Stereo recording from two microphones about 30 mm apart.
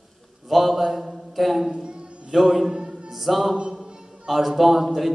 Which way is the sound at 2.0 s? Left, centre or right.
Right.